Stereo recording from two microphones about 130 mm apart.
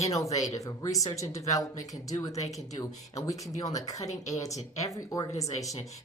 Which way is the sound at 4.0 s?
60° left (ahead or behind).